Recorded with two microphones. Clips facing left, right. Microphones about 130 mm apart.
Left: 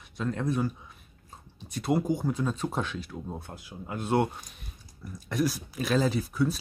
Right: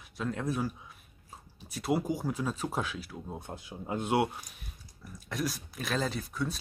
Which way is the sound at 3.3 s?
20° right (ahead or behind).